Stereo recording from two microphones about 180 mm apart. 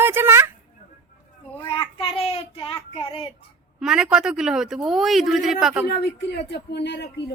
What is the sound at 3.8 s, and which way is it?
Speech, 5° right (ahead or behind).